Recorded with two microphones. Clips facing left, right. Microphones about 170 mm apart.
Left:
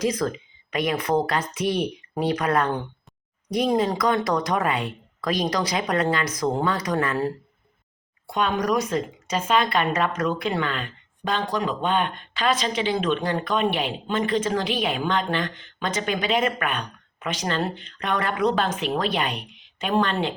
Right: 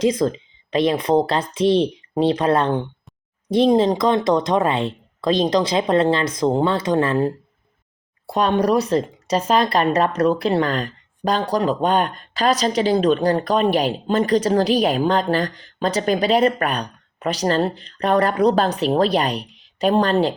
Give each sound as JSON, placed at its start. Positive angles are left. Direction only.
{"t": 0.0, "sound": "a woman's voice", "side_deg": -25}